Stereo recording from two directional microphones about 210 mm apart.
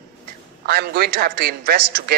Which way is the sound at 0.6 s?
50° right (ahead or behind).